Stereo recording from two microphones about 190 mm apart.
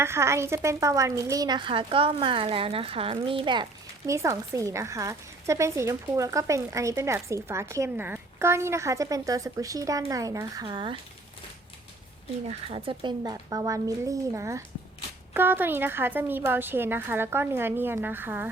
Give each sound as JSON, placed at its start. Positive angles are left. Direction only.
{"t": 0.0, "sound": "a woman's voice", "side_deg": -15}
{"t": 12.5, "sound": "a woman's voice", "side_deg": -30}